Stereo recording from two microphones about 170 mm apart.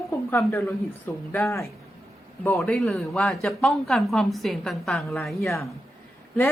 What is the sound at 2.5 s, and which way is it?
A woman's voice, centre (ahead or behind).